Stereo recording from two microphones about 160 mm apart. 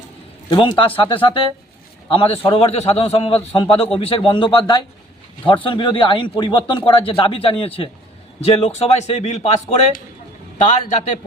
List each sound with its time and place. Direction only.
0.5 s a man's voice: 30° left (ahead or behind)